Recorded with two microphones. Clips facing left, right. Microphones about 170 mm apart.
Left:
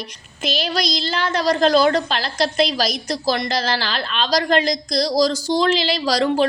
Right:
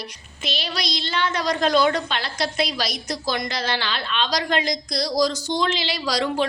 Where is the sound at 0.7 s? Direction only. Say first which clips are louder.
Left 5 dB; 40° left (ahead or behind).